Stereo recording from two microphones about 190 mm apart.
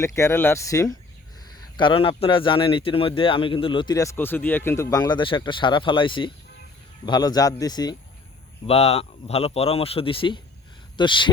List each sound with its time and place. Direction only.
0.0 s speech: 15° left (ahead or behind)
8.6 s speech: 35° left (ahead or behind)